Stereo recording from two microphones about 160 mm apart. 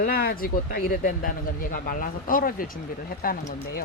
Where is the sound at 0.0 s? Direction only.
70° left (ahead or behind).